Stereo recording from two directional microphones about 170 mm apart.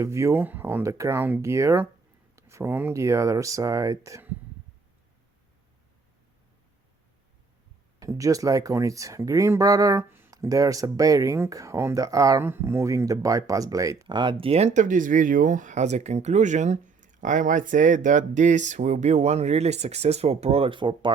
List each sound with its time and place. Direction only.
0.0 s speech: 15° right (ahead or behind)
7.9 s speech: 20° right (ahead or behind)